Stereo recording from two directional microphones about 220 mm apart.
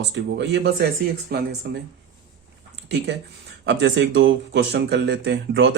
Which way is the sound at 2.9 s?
50° right (ahead or behind).